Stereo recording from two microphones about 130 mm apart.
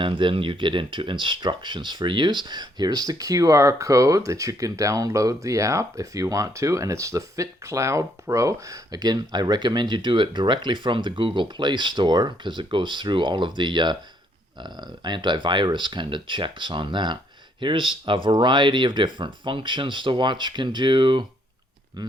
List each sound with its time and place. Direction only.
0.0 s speech: 40° right (ahead or behind)